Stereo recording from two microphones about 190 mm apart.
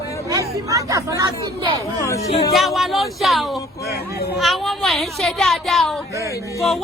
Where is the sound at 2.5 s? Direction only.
Centre (ahead or behind).